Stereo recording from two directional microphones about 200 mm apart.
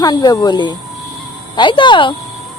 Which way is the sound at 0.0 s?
20° left (ahead or behind).